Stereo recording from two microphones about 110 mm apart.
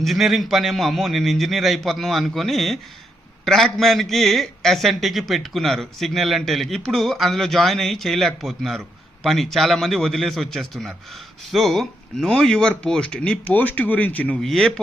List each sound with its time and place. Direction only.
0.0 s a man's voice: centre (ahead or behind)
14.4 s a man's voice: 5° left (ahead or behind)